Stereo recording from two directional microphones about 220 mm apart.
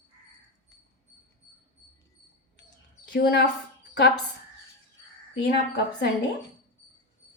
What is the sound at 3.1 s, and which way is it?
Speech, 50° left (ahead or behind).